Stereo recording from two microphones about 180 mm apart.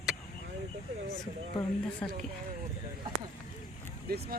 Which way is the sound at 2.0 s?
10° left (ahead or behind).